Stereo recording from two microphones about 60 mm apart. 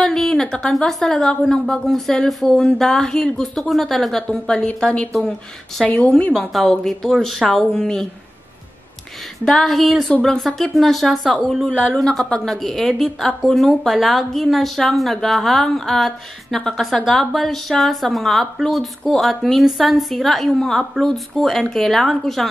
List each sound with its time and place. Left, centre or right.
0.0 s a sound: centre
1.0 s speech: centre
4.6 s a woman's voice: centre
5.8 s speech: centre
9.4 s speech: centre